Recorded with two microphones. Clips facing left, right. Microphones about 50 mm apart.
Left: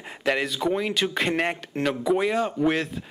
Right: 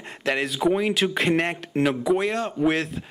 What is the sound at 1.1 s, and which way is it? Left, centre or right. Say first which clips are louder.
Speech: right 2 dB; centre.